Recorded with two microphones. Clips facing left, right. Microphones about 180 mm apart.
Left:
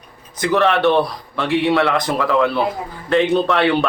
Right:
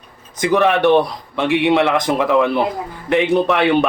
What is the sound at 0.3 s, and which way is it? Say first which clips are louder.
A man's voice: right 1 dB; 15° right (ahead or behind).